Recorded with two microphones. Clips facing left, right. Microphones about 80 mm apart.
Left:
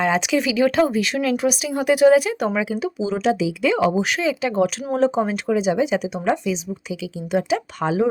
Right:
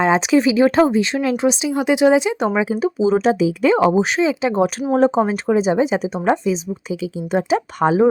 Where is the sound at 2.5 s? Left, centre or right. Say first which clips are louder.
Right 4 dB; right.